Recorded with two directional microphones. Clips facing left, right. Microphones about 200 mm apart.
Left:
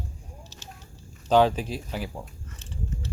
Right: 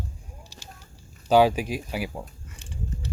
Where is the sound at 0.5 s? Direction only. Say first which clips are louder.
Left 1 dB; 10° right (ahead or behind).